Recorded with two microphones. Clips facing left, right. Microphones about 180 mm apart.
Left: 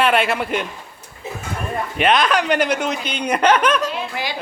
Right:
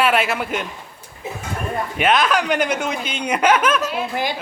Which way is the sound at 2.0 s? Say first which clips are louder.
Left 1 dB; 5° right (ahead or behind).